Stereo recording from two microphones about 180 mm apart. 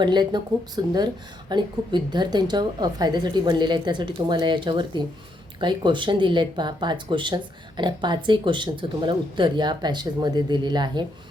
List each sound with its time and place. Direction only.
0.0 s speech: 25° right (ahead or behind)